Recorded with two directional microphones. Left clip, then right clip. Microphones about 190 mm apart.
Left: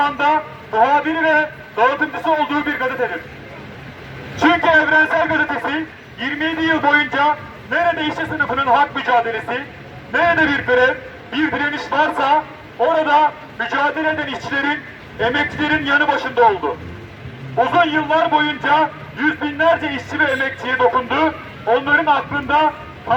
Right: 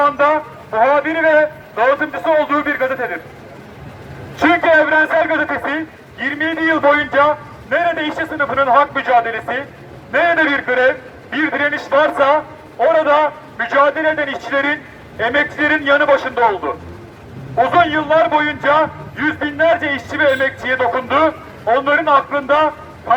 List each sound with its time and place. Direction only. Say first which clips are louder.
0.0 s a man's voice: right 3 dB; 25° right (ahead or behind)
4.4 s a man's voice: right 2 dB; 25° right (ahead or behind)
17.6 s a man's voice: right 2 dB; 30° right (ahead or behind)